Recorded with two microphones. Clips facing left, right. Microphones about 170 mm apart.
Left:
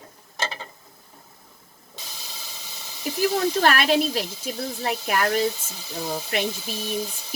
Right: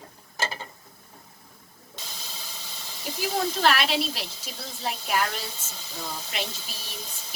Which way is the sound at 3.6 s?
50° left (ahead or behind).